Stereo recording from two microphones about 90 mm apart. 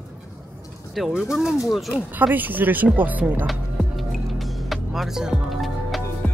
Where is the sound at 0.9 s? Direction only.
5° right (ahead or behind).